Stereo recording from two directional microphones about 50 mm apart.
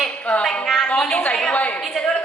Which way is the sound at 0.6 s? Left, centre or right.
Centre.